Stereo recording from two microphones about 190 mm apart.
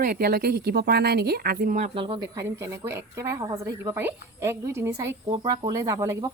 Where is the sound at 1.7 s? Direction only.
30° right (ahead or behind).